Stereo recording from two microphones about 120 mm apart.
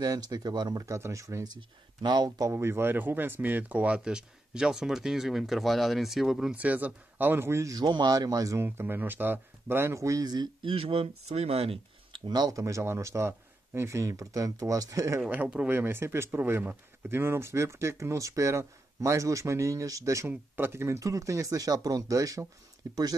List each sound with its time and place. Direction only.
0.0 s speech: 30° right (ahead or behind)
2.5 s speech: 20° right (ahead or behind)
8.6 s speech: 15° right (ahead or behind); by 12.2 s 55° right (ahead or behind)
12.3 s speech: 35° right (ahead or behind)
15.2 s speech: 15° right (ahead or behind); by 23.0 s 30° right (ahead or behind)